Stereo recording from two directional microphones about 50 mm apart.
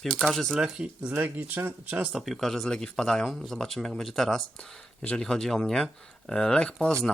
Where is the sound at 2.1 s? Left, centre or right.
Centre.